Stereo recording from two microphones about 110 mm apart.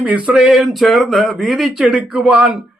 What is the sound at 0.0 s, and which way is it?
Speech, 10° right (ahead or behind).